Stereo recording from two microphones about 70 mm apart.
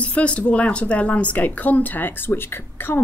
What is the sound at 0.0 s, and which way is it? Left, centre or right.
Speech, centre.